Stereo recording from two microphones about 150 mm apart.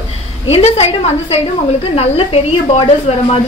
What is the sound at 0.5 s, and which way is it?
A woman's voice, 40° left (ahead or behind).